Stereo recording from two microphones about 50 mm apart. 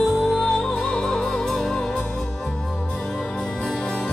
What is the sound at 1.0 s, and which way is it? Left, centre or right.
Music, centre.